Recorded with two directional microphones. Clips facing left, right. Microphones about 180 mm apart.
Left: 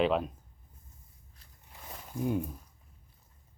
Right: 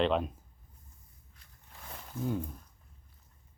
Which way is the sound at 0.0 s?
5° left (ahead or behind).